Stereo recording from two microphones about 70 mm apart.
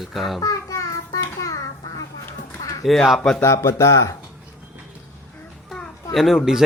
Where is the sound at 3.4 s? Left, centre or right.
Left.